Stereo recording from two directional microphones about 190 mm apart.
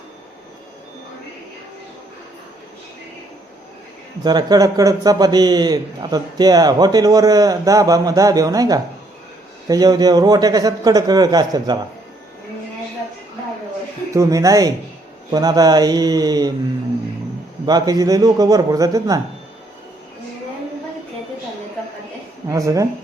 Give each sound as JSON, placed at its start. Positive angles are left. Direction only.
{"t": 4.2, "sound": "a man's voice", "side_deg": -20}
{"t": 14.1, "sound": "a man's voice", "side_deg": -15}
{"t": 17.7, "sound": "a man's voice", "side_deg": -20}
{"t": 22.4, "sound": "speech", "side_deg": -15}